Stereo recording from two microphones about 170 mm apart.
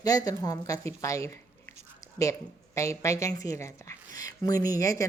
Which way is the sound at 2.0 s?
20° left (ahead or behind).